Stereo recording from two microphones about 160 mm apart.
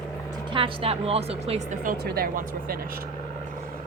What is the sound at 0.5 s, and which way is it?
Speech, 35° right (ahead or behind).